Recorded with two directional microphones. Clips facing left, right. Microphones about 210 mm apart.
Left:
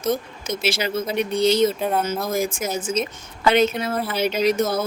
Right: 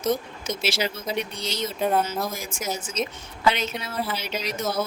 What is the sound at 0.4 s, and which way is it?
Speech, 55° left (ahead or behind).